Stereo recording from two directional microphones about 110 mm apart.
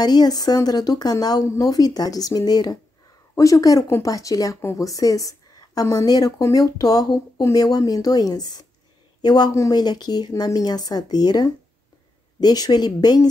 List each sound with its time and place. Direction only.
0.0 s speech: 40° left (ahead or behind)